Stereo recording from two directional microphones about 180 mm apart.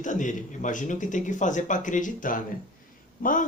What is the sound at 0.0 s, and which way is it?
Speech, 45° left (ahead or behind).